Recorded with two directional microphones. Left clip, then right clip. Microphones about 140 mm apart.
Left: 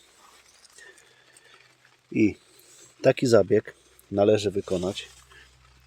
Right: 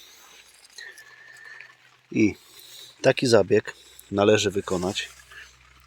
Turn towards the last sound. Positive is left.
turn(degrees=0)  # may be behind; listen again after turning